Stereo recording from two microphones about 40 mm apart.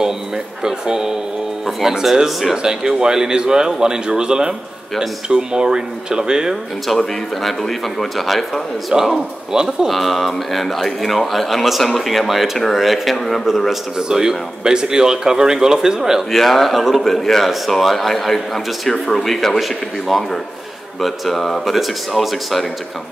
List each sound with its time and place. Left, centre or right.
0.7 s speech: centre
7.4 s speech: centre
8.9 s speech: centre
9.8 s speech: centre
13.9 s speech: centre
16.3 s speech: centre
21.0 s speech: centre